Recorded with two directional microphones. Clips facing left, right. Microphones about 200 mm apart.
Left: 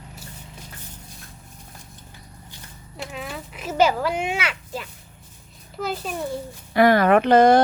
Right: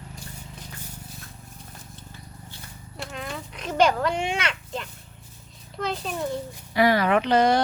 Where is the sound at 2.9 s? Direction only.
Centre (ahead or behind).